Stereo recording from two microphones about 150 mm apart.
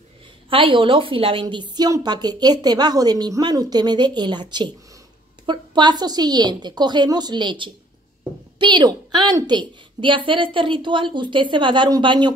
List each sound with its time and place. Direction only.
0.5 s a woman's voice: 35° right (ahead or behind)